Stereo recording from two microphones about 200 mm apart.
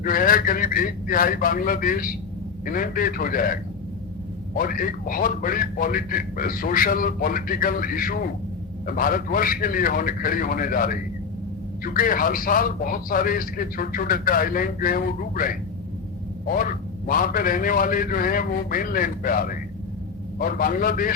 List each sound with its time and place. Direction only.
0.0 s a man's voice: 45° left (ahead or behind)